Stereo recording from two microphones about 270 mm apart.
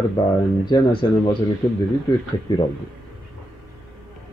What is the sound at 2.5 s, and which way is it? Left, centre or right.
Speech, centre.